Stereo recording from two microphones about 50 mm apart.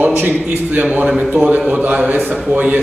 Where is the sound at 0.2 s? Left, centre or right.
Right.